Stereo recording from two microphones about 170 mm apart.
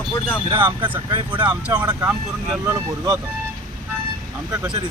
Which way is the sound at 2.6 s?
20° right (ahead or behind).